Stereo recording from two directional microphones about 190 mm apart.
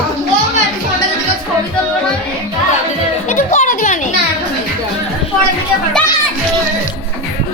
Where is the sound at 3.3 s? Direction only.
40° left (ahead or behind).